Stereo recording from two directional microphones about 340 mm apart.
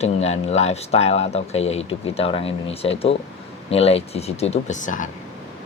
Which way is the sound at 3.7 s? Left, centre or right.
Centre.